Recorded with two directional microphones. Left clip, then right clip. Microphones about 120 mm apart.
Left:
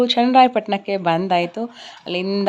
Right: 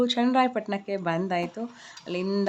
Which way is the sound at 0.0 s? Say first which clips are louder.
Left 10 dB; 25° left (ahead or behind).